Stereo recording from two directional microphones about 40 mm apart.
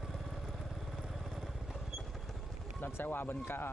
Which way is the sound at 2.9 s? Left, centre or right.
Left.